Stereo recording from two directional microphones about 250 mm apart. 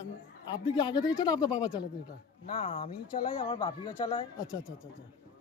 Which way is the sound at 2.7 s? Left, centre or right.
Left.